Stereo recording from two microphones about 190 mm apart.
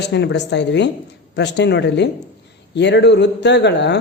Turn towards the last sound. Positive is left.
turn(degrees=65)  # may be behind; listen again after turning